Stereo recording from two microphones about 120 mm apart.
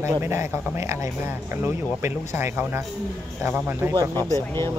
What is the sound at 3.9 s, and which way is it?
Speech, 30° right (ahead or behind).